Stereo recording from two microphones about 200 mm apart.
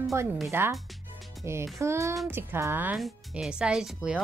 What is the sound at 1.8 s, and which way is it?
A woman's voice, 15° right (ahead or behind).